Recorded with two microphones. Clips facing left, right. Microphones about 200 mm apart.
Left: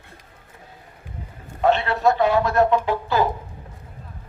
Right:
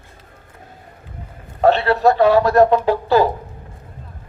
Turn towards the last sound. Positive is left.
turn(degrees=-35)  # may be behind; listen again after turning